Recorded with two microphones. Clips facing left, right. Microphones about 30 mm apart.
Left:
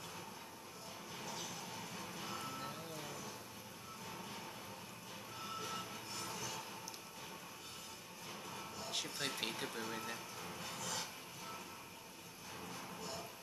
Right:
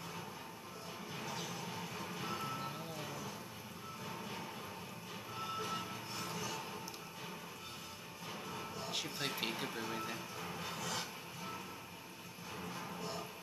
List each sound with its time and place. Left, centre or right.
1.1 s music: centre
8.3 s music: centre
12.6 s music: centre